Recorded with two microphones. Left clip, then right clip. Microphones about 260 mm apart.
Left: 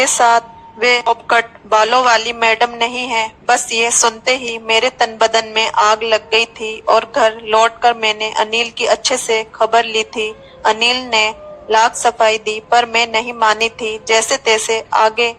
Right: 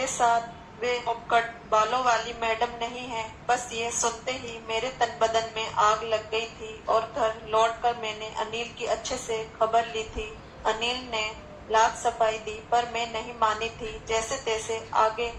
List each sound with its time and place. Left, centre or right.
0.0 s a woman's voice: left